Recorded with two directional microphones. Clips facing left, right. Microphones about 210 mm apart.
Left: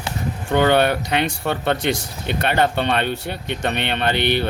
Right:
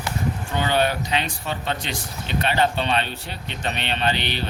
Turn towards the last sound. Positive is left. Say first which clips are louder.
# left 5 dB
turn(degrees=55)  # may be behind; listen again after turning